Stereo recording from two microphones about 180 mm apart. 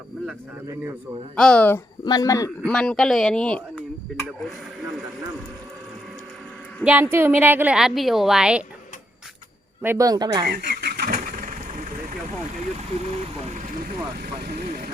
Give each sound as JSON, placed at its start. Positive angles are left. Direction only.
{"t": 1.4, "sound": "speech", "side_deg": 5}
{"t": 2.0, "sound": "speech", "side_deg": 20}
{"t": 2.6, "sound": "speech", "side_deg": 5}
{"t": 6.8, "sound": "a woman's voice", "side_deg": -10}
{"t": 9.8, "sound": "speech", "side_deg": -15}
{"t": 10.4, "sound": "vehicle", "side_deg": -65}
{"t": 13.0, "sound": "speech", "side_deg": -40}
{"t": 14.2, "sound": "speech", "side_deg": -60}